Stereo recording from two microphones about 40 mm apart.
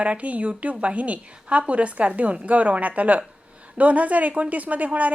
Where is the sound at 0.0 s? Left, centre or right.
Right.